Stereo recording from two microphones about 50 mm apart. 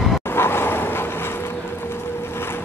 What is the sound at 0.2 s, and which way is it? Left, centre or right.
Vehicle, left.